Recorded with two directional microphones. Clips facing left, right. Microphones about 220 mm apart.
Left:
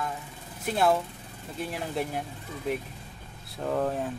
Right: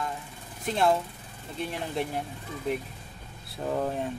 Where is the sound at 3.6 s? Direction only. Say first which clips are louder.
Left 1 dB; centre (ahead or behind).